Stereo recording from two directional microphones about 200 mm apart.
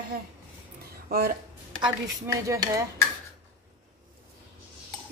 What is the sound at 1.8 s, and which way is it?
Speech, 15° right (ahead or behind).